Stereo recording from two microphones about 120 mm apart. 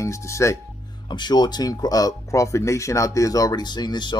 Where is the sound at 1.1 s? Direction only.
40° left (ahead or behind).